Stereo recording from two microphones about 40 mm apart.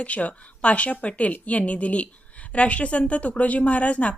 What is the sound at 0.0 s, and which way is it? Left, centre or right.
A woman's voice, left.